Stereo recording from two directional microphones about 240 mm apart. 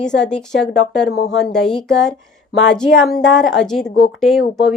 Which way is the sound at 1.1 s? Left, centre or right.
Left.